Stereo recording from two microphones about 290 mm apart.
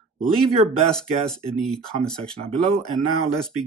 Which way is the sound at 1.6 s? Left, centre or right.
Centre.